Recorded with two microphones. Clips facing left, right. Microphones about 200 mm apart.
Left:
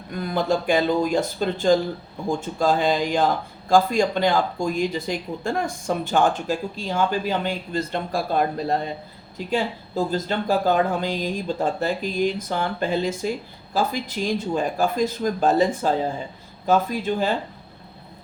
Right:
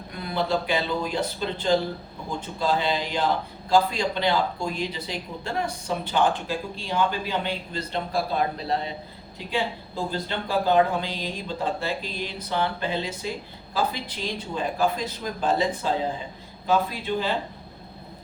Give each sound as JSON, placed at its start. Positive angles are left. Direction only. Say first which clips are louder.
{"t": 0.2, "sound": "speech", "louder": "left 3 dB", "side_deg": 45}